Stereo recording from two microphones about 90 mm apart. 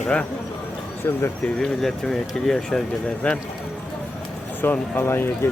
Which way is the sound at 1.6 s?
5° left (ahead or behind).